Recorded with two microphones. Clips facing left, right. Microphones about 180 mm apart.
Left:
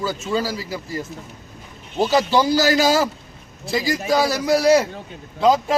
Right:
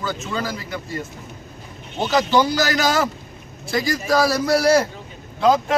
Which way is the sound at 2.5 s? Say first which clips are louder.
Left 3 dB; 30° left (ahead or behind).